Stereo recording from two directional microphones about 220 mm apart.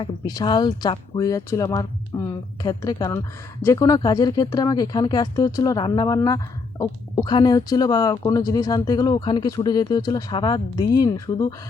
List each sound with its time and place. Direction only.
0.0 s speech: 20° left (ahead or behind)